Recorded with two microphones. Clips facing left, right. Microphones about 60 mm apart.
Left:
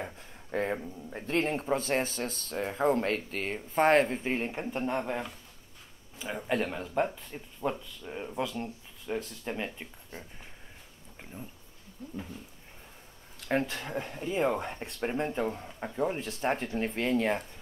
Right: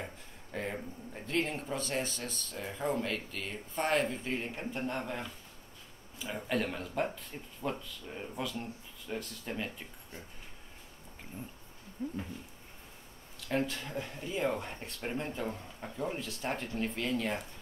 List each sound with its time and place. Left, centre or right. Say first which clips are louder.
0.0 s speech: left 4 dB; left
2.5 s speech: left 7 dB; left
3.7 s speech: left 8 dB; left
4.0 s speech: left 5 dB; left
6.2 s speech: left 3 dB; left
9.0 s speech: left 5 dB; left
12.0 s a sound: right 7 dB; right
13.5 s speech: left 3 dB; left